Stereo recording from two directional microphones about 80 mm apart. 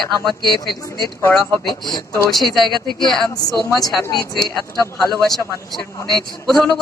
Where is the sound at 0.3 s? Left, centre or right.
Centre.